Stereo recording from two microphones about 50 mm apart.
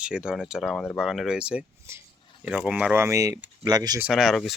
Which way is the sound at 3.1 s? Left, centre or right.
Right.